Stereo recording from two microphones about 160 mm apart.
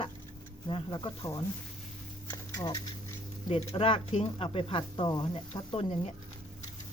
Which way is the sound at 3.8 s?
35° left (ahead or behind).